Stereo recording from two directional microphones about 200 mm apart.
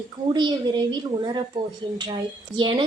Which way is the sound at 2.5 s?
20° right (ahead or behind).